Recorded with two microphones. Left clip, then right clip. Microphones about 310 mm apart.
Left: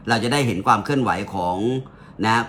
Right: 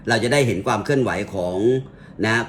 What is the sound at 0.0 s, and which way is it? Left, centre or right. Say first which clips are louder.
Speech: right 2 dB; left.